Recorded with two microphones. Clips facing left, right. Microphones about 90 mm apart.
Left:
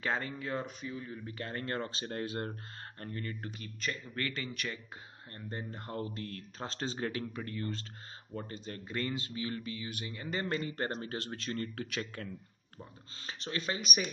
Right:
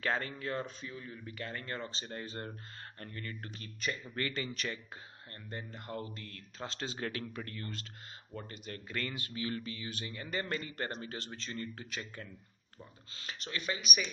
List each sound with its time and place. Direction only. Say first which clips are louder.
0.0 s speech: even; 15° left (ahead or behind)
1.4 s speech: left 4 dB; 45° left (ahead or behind)
3.0 s a man's voice: left 4 dB; 30° left (ahead or behind)
3.8 s speech: even; 10° right (ahead or behind)
4.3 s speech: right 1 dB; centre (ahead or behind)
5.3 s a man's voice: left 3 dB; 30° left (ahead or behind)
7.0 s a man's voice: left 3 dB; 20° left (ahead or behind)
10.9 s speech: left 4 dB; 40° left (ahead or behind); by 12.3 s 75° left (ahead or behind)
13.1 s speech: left 3 dB; 30° left (ahead or behind)